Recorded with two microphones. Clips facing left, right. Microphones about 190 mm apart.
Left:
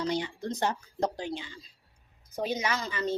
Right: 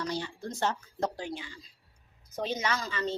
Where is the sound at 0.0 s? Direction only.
20° left (ahead or behind).